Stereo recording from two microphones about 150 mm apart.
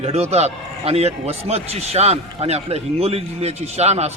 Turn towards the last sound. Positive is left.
turn(degrees=-45)  # may be behind; listen again after turning